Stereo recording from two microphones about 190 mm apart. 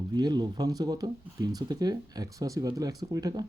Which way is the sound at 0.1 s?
20° right (ahead or behind).